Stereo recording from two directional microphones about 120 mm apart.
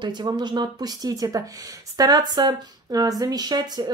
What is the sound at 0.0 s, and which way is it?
Speech, 35° right (ahead or behind).